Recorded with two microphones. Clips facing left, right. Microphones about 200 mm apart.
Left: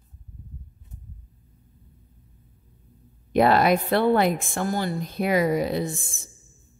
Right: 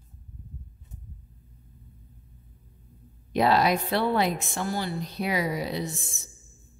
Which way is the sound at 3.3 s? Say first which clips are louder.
Left 4 dB; 55° left (ahead or behind).